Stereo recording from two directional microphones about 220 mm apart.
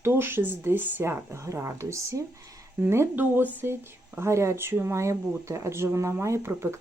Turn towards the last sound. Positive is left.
turn(degrees=-10)  # may be behind; listen again after turning